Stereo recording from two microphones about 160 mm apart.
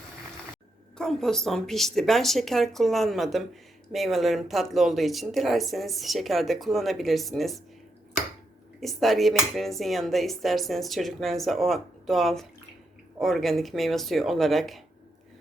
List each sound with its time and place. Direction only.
0.9 s speech: 5° left (ahead or behind)
8.8 s speech: centre (ahead or behind)